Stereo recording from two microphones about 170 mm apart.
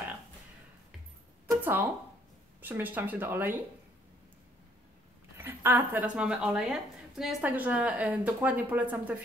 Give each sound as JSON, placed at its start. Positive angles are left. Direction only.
{"t": 1.6, "sound": "a sound", "side_deg": -10}
{"t": 2.6, "sound": "a woman's voice", "side_deg": -10}
{"t": 5.4, "sound": "a woman's voice", "side_deg": -15}